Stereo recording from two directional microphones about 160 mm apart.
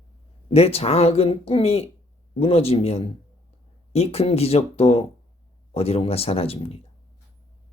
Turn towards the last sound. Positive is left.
turn(degrees=35)  # may be behind; listen again after turning